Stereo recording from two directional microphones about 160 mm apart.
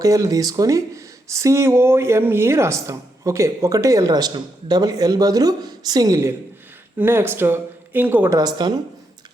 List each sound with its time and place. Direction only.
0.0 s speech: 20° right (ahead or behind)
8.4 s speech: 25° right (ahead or behind)